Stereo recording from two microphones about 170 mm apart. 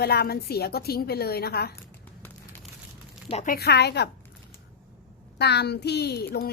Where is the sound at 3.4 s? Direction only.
65° left (ahead or behind).